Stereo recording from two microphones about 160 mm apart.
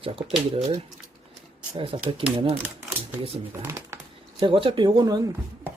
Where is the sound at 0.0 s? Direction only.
35° right (ahead or behind).